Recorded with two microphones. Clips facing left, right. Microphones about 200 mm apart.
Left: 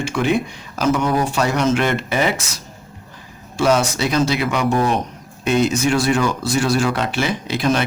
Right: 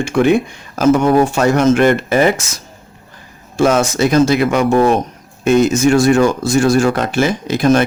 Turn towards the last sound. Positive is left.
turn(degrees=-45)  # may be behind; listen again after turning